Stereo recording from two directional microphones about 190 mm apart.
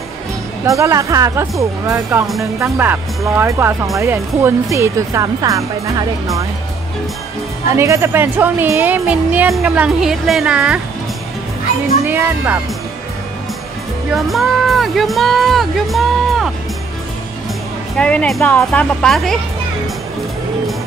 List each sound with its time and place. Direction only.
0.7 s speech: 15° right (ahead or behind)
7.7 s speech: 15° right (ahead or behind)
12.0 s speech: 10° right (ahead or behind)
14.1 s speech: centre (ahead or behind)
17.9 s speech: 5° left (ahead or behind)